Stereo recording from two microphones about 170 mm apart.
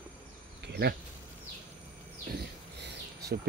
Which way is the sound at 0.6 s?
75° right (ahead or behind).